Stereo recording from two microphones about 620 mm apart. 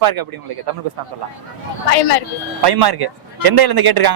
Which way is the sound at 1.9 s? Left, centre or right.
Left.